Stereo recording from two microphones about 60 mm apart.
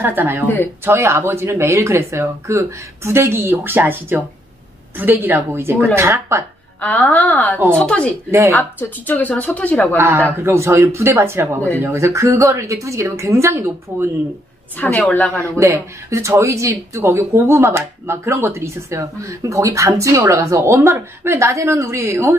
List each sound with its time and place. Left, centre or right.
0.0 s a woman's voice: right
0.8 s a woman's voice: right
7.1 s a woman's voice: left
7.7 s speech: centre
8.5 s a woman's voice: left
9.9 s speech: right
13.9 s a woman's voice: right
14.8 s a woman's voice: left
15.6 s speech: right